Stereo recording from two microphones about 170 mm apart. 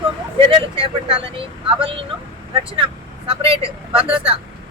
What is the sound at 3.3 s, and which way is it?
Speech, 30° right (ahead or behind).